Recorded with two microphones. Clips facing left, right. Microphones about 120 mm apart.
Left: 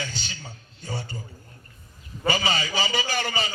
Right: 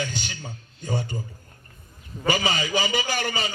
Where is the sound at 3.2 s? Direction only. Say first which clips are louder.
Even; 20° left (ahead or behind).